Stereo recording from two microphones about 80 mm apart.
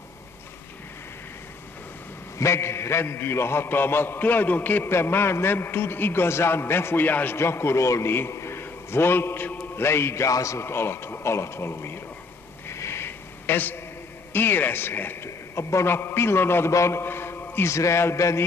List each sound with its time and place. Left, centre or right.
2.3 s a man's voice: left
12.6 s a sound: left
14.3 s a man's voice: left